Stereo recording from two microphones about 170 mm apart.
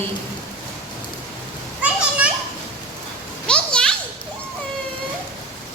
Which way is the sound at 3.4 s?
5° left (ahead or behind).